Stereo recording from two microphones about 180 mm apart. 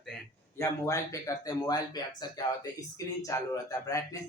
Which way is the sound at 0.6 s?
15° left (ahead or behind).